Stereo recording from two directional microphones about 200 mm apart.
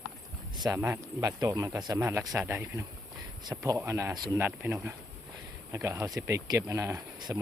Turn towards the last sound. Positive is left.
turn(degrees=-15)  # may be behind; listen again after turning